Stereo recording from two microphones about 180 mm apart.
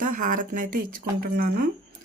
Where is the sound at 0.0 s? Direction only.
45° right (ahead or behind).